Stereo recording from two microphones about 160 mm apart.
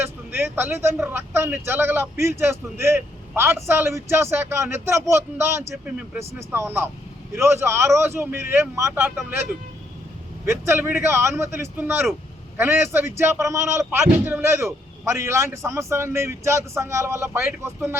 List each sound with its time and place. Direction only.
0.0 s speech: 15° right (ahead or behind)
10.4 s speech: 15° right (ahead or behind)